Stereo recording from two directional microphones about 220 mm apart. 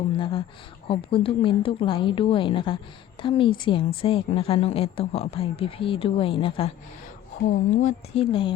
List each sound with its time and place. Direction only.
0.2 s a woman's voice: 25° left (ahead or behind)
7.8 s a woman's voice: 30° left (ahead or behind)